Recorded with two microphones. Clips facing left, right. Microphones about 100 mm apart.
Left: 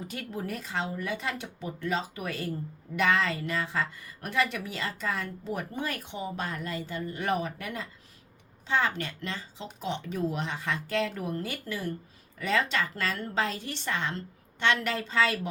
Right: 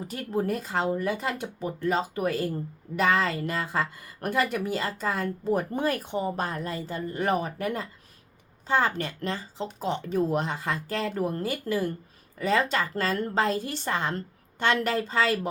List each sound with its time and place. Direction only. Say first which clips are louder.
0.1 s a woman's voice: right 10 dB; 40° right (ahead or behind)